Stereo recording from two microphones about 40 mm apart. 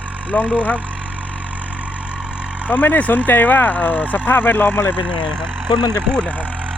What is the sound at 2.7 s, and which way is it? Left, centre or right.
Speech, left.